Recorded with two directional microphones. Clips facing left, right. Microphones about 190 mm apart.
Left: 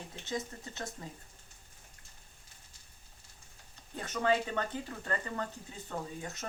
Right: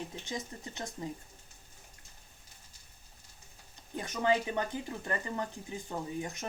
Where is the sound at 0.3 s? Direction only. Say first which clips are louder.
Left 2 dB; 15° right (ahead or behind).